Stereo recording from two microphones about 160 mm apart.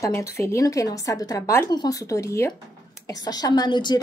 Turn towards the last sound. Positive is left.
turn(degrees=30)  # may be behind; listen again after turning